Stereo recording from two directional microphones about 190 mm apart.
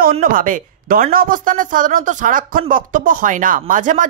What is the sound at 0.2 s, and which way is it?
Speech, 45° right (ahead or behind).